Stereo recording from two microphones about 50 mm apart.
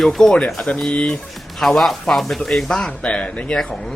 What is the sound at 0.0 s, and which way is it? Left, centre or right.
Speech, centre.